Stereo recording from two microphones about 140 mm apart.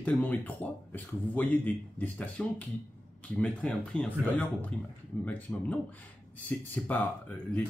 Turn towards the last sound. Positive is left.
turn(degrees=10)  # may be behind; listen again after turning